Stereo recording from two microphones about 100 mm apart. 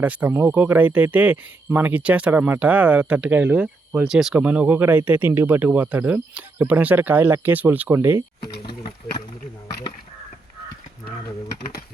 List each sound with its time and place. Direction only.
0.0 s speech: 15° right (ahead or behind)